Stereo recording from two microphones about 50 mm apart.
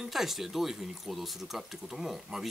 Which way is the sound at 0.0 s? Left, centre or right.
Centre.